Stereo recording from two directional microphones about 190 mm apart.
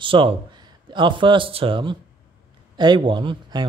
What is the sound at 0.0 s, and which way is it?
Speech, 25° right (ahead or behind).